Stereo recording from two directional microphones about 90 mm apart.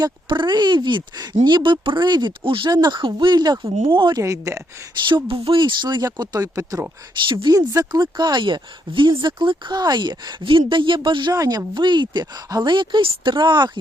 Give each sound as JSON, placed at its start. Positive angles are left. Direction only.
{"t": 0.0, "sound": "speech", "side_deg": -60}
{"t": 2.4, "sound": "speech", "side_deg": -75}
{"t": 2.6, "sound": "speech", "side_deg": -50}
{"t": 3.8, "sound": "speech", "side_deg": -75}
{"t": 4.1, "sound": "speech", "side_deg": -35}
{"t": 5.0, "sound": "speech", "side_deg": -70}
{"t": 6.1, "sound": "speech", "side_deg": -45}
{"t": 11.3, "sound": "speech", "side_deg": -45}
{"t": 11.7, "sound": "speech", "side_deg": -60}
{"t": 12.7, "sound": "speech", "side_deg": -60}